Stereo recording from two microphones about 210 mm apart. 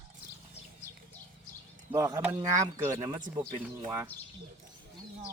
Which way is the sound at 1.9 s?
10° right (ahead or behind).